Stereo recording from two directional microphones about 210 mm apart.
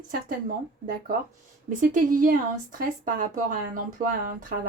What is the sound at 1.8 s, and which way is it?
Speech, 40° right (ahead or behind).